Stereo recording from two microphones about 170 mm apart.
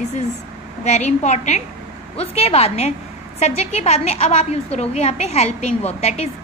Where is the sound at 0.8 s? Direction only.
40° left (ahead or behind).